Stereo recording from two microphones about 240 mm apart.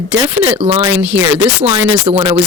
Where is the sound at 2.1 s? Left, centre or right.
Right.